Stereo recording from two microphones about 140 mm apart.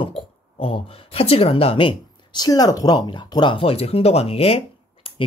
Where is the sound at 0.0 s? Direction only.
40° left (ahead or behind).